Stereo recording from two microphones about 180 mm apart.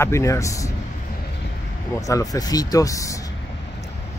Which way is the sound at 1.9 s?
20° left (ahead or behind).